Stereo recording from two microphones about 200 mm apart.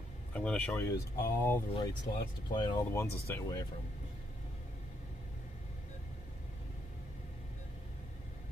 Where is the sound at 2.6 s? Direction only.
20° left (ahead or behind).